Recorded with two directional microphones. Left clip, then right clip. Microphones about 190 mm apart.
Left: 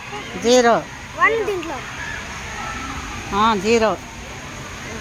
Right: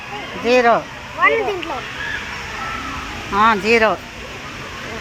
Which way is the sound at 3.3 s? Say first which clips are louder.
Right 3 dB; 10° right (ahead or behind).